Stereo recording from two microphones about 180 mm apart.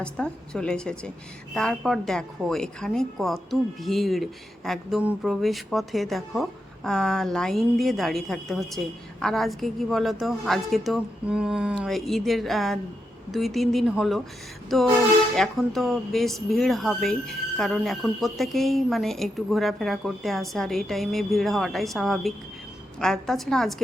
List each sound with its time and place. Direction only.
0.0 s a woman's voice: 5° left (ahead or behind)